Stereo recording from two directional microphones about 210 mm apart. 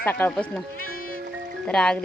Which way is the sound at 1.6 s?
5° left (ahead or behind).